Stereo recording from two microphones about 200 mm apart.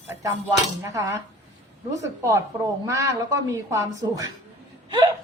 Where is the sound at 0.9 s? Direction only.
15° right (ahead or behind).